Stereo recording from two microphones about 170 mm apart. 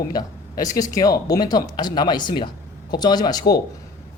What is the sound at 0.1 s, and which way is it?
Speech, 20° left (ahead or behind).